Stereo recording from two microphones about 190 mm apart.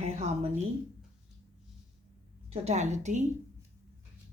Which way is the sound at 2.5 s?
35° right (ahead or behind).